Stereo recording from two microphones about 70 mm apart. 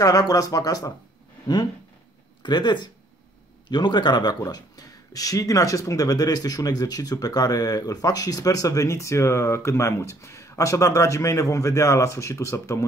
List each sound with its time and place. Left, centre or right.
0.0 s speech: left
2.4 s speech: left